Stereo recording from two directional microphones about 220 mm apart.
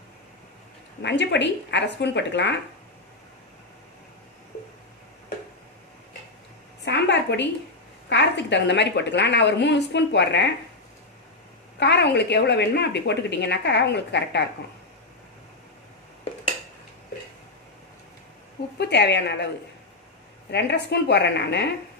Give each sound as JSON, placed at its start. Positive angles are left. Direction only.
{"t": 1.0, "sound": "a woman's voice", "side_deg": 50}
{"t": 6.8, "sound": "a sound", "side_deg": 50}
{"t": 8.1, "sound": "a woman's voice", "side_deg": 50}
{"t": 11.8, "sound": "a woman's voice", "side_deg": 50}
{"t": 18.8, "sound": "a woman's voice", "side_deg": 50}
{"t": 20.5, "sound": "a woman's voice", "side_deg": 50}